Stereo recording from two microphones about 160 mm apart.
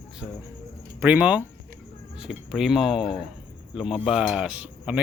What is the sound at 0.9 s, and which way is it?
Speech, 10° right (ahead or behind).